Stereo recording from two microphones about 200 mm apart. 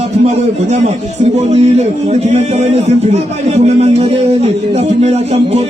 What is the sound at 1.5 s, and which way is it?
Music, 35° right (ahead or behind).